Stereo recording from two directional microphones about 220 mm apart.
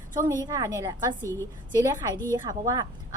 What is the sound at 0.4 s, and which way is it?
Speech, 15° right (ahead or behind).